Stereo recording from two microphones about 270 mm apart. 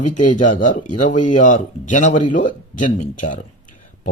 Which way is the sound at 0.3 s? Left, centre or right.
Left.